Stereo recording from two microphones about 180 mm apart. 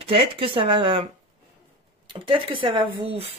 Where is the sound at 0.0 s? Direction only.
30° right (ahead or behind).